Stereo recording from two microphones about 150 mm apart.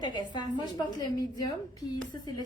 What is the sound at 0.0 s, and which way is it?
A woman's voice, 30° left (ahead or behind).